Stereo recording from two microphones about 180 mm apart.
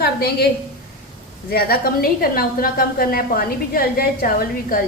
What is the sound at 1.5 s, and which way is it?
A woman's voice, 60° left (ahead or behind).